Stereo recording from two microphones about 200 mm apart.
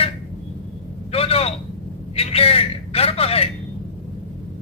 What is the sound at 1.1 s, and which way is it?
A man's voice, 30° left (ahead or behind).